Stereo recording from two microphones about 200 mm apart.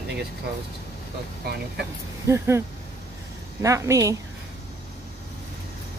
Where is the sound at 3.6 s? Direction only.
15° right (ahead or behind).